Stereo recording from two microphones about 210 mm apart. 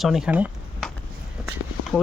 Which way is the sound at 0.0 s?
Centre (ahead or behind).